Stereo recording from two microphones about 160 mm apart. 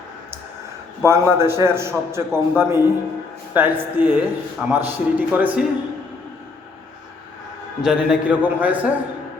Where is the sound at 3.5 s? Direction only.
10° right (ahead or behind).